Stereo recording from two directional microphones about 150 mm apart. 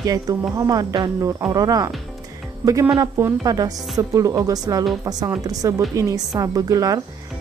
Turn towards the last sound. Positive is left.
turn(degrees=-25)  # may be behind; listen again after turning